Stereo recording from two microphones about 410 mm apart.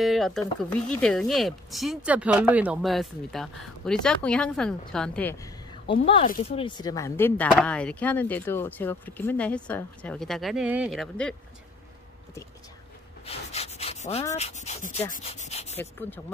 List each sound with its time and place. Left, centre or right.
0.0 s speech: centre
13.2 s speech: centre
15.1 s rub: centre
15.8 s speech: centre